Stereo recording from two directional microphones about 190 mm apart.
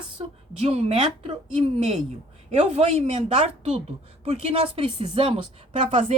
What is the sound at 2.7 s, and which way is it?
Speech, 35° right (ahead or behind).